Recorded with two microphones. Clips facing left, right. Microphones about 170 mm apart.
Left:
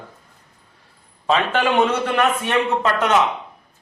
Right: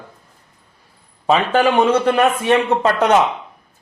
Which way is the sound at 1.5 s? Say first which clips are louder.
Right 5 dB; 35° right (ahead or behind).